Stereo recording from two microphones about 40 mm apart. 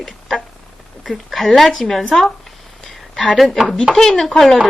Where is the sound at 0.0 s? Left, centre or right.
Centre.